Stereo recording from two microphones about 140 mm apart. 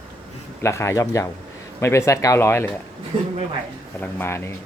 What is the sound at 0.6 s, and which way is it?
Speech, 20° left (ahead or behind).